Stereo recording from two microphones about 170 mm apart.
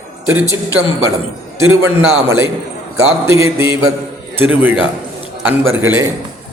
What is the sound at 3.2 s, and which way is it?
A man's voice, 15° right (ahead or behind).